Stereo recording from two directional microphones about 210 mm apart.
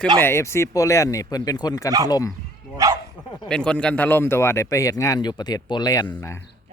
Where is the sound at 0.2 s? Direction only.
10° left (ahead or behind).